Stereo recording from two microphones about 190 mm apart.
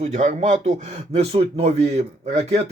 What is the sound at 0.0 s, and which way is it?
Speech, 35° right (ahead or behind).